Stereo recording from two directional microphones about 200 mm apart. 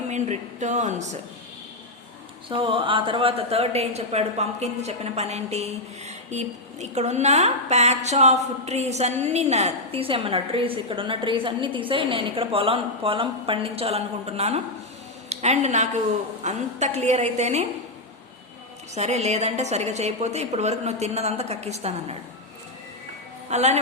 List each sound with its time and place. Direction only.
0.1 s a woman's voice: 35° right (ahead or behind)
2.5 s a woman's voice: 25° right (ahead or behind)
18.9 s a woman's voice: 35° right (ahead or behind)
23.5 s a woman's voice: 35° right (ahead or behind)